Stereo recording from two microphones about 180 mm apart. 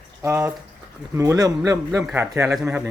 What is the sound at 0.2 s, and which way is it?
A man's voice, 15° right (ahead or behind).